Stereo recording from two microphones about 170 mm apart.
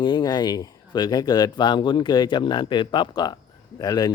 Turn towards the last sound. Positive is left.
turn(degrees=25)  # may be behind; listen again after turning